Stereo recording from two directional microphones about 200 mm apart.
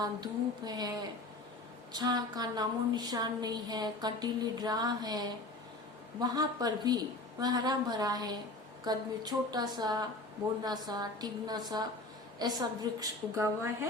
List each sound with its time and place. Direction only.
0.0 s a woman's voice: 20° right (ahead or behind)